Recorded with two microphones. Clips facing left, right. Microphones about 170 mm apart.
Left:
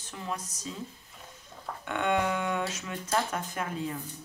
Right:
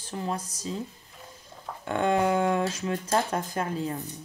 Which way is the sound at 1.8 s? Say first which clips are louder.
Right 4 dB; 35° right (ahead or behind).